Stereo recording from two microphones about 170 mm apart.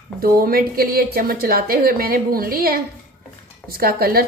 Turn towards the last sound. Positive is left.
turn(degrees=-60)  # may be behind; listen again after turning